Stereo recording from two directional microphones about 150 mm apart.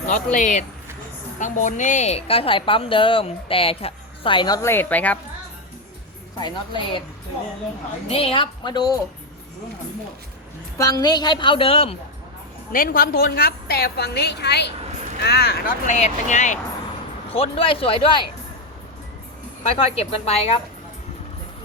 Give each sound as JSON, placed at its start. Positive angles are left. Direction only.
{"t": 0.1, "sound": "a woman's voice", "side_deg": 55}
{"t": 4.7, "sound": "speech", "side_deg": 10}
{"t": 6.4, "sound": "a woman's voice", "side_deg": 35}
{"t": 8.0, "sound": "a woman's voice", "side_deg": 40}
{"t": 10.8, "sound": "a woman's voice", "side_deg": 25}
{"t": 12.7, "sound": "a woman's voice", "side_deg": 70}
{"t": 15.9, "sound": "speech", "side_deg": 50}
{"t": 17.2, "sound": "a woman's voice", "side_deg": 40}
{"t": 19.7, "sound": "a woman's voice", "side_deg": 40}